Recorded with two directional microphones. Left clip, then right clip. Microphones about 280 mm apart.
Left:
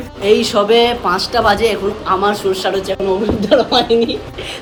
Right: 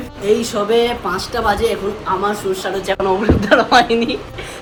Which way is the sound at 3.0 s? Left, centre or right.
Centre.